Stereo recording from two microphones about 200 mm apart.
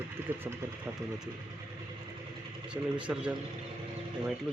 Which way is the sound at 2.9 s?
5° right (ahead or behind).